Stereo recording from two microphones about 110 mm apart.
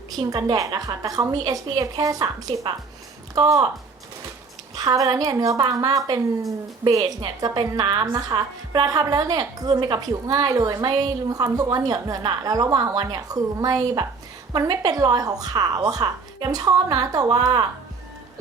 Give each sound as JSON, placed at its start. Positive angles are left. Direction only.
{"t": 0.2, "sound": "a woman's voice", "side_deg": -40}
{"t": 4.7, "sound": "a woman's voice", "side_deg": -35}